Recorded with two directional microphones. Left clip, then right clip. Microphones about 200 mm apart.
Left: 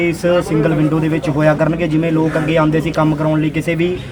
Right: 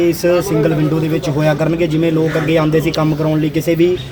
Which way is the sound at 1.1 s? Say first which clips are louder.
Left 1 dB; 50° right (ahead or behind).